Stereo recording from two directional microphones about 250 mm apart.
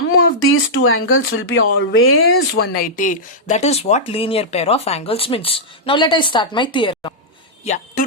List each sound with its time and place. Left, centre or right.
0.4 s speech: left
2.7 s speech: left